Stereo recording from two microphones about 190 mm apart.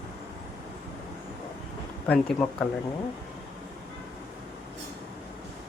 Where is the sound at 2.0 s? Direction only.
10° left (ahead or behind).